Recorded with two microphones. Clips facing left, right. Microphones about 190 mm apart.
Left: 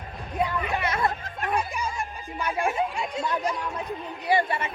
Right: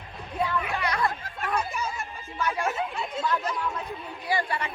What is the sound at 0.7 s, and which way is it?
Music, 25° left (ahead or behind).